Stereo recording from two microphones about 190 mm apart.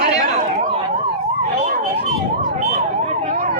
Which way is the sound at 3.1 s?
40° right (ahead or behind).